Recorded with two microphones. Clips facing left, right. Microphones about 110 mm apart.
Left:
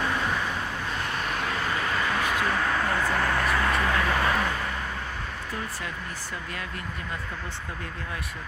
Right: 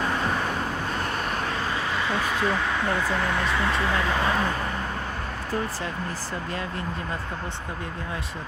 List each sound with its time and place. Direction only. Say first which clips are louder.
1.7 s a sound: even; 20° right (ahead or behind)
2.5 s speech: right 1 dB; 5° right (ahead or behind)
3.4 s speech: even; 20° right (ahead or behind)